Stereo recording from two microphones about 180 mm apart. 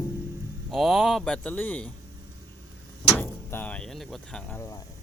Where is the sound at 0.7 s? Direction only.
Centre (ahead or behind).